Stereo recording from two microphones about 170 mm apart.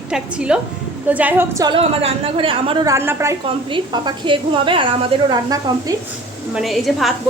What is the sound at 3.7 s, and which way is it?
A woman's voice, 25° right (ahead or behind).